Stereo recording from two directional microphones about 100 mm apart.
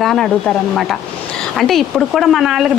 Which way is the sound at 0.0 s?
5° left (ahead or behind).